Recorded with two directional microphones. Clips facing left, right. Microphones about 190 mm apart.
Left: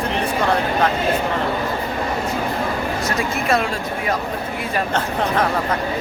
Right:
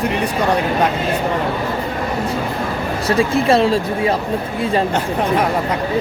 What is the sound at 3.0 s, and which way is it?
Speech, 30° right (ahead or behind).